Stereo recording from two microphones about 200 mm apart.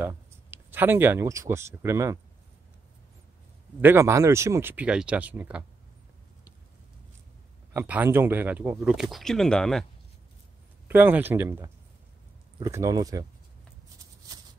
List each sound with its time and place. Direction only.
0.0 s speech: 10° right (ahead or behind)
3.8 s speech: 15° right (ahead or behind)
7.7 s speech: 10° right (ahead or behind)
10.9 s speech: 10° right (ahead or behind)